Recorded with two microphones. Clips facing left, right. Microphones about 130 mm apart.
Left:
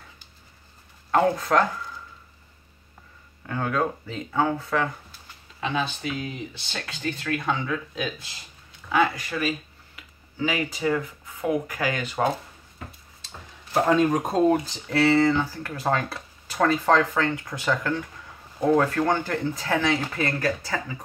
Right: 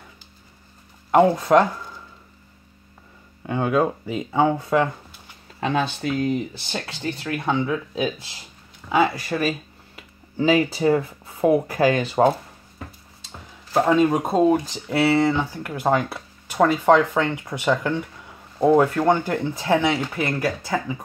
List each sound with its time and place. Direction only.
1.1 s speech: 25° right (ahead or behind)
3.4 s speech: 20° right (ahead or behind)
5.6 s speech: 45° right (ahead or behind)
6.9 s speech: 30° right (ahead or behind)
9.3 s speech: 40° right (ahead or behind)
13.8 s speech: 10° right (ahead or behind)